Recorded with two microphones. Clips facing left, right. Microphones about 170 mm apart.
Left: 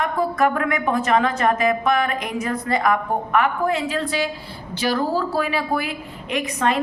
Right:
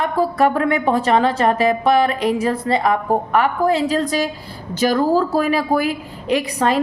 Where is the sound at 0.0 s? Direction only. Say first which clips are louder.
Right 3 dB; 35° right (ahead or behind).